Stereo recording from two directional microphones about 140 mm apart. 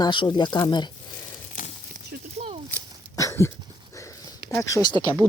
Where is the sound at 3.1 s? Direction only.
20° left (ahead or behind).